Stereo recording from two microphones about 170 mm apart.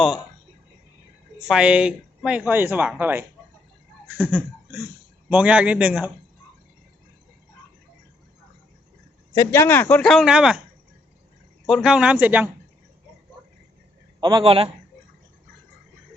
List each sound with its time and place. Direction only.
1.5 s speech: 5° right (ahead or behind)
9.3 s a man's voice: 20° left (ahead or behind); by 10.6 s 5° right (ahead or behind)
11.7 s speech: 5° right (ahead or behind)
14.2 s a man's voice: 25° right (ahead or behind)